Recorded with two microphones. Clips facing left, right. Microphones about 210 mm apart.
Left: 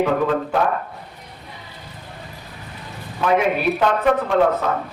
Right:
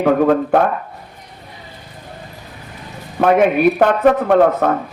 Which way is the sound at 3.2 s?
55° right (ahead or behind).